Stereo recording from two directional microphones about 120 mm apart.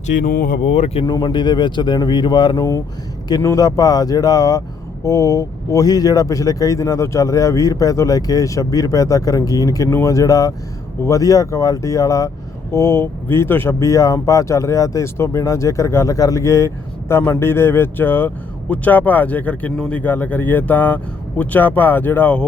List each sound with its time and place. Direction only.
0.1 s speech: 90° left; by 1.0 s 60° left (ahead or behind)
1.0 s speech: 35° left (ahead or behind)
2.6 s speech: 25° left (ahead or behind)